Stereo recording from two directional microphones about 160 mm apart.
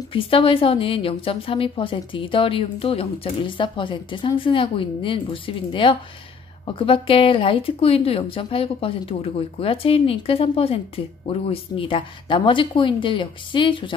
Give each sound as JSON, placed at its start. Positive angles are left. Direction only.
{"t": 0.1, "sound": "a woman's voice", "side_deg": 35}